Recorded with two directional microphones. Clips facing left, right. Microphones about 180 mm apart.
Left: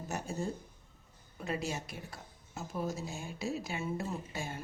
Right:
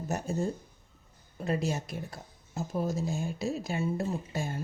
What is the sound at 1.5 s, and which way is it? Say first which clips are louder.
Speech: right 6 dB; 40° right (ahead or behind).